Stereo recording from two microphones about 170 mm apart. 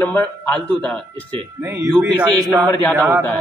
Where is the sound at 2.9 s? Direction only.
10° right (ahead or behind).